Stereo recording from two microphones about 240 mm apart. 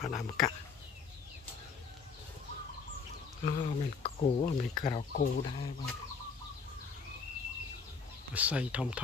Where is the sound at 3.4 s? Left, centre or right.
Left.